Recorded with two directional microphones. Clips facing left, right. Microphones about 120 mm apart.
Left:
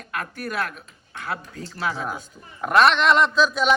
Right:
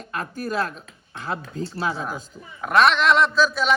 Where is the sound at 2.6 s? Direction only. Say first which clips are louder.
Left 1 dB; centre (ahead or behind).